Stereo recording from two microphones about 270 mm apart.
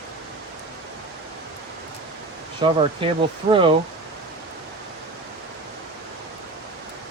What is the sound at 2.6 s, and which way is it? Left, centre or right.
Speech, centre.